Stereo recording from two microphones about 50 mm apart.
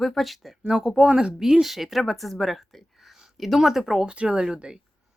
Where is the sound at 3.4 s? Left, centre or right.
Centre.